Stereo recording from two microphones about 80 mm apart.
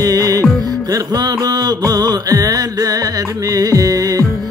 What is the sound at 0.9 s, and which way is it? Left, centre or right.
Mantra, right.